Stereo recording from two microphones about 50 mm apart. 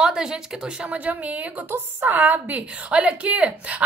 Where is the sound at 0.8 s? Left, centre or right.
Right.